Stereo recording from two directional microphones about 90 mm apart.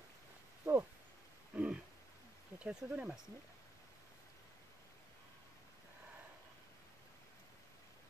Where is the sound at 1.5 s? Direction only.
15° right (ahead or behind).